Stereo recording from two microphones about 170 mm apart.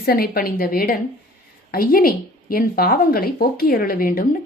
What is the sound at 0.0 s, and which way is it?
A woman's voice, 60° left (ahead or behind).